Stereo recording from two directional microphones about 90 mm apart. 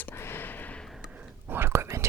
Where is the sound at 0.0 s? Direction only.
25° left (ahead or behind).